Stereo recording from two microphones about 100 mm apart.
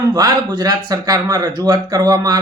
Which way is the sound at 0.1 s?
40° right (ahead or behind).